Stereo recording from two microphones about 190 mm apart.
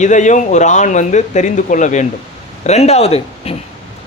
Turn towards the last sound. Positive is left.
turn(degrees=30)  # may be behind; listen again after turning